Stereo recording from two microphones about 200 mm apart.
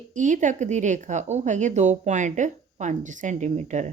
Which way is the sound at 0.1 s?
40° right (ahead or behind).